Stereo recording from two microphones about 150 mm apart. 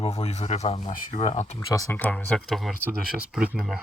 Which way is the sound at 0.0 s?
45° left (ahead or behind).